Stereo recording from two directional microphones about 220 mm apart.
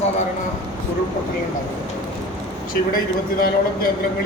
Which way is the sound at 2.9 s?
40° left (ahead or behind).